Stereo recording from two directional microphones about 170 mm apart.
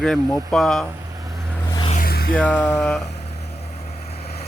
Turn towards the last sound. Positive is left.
turn(degrees=40)  # may be behind; listen again after turning